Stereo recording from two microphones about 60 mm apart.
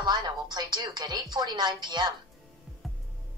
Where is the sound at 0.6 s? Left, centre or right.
Right.